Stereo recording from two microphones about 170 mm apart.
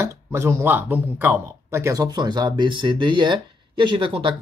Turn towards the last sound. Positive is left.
turn(degrees=-30)  # may be behind; listen again after turning